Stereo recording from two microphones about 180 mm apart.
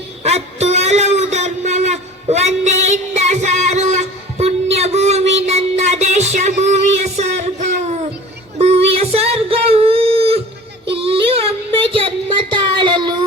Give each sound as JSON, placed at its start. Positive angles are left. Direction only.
{"t": 0.2, "sound": "a sound", "side_deg": -35}
{"t": 10.8, "sound": "child singing", "side_deg": -30}
{"t": 11.9, "sound": "music", "side_deg": -30}